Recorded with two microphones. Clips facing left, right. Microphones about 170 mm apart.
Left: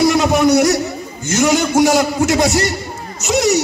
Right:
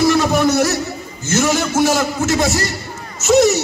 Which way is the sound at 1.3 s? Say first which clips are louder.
Left 3 dB; 15° left (ahead or behind).